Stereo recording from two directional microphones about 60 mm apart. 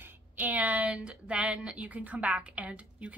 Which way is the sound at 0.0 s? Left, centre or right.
Right.